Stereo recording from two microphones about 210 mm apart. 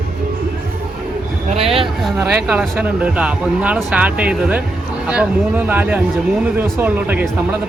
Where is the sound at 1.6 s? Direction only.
25° right (ahead or behind).